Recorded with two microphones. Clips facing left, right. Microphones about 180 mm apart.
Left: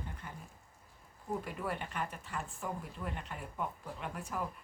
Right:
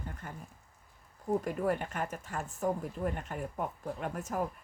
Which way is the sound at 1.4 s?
45° right (ahead or behind).